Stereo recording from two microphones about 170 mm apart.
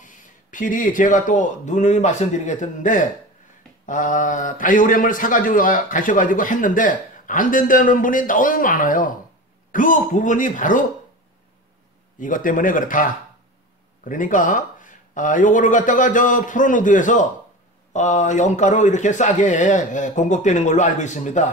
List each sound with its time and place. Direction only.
0.0 s a man's voice: 50° left (ahead or behind)
12.2 s a man's voice: 50° left (ahead or behind)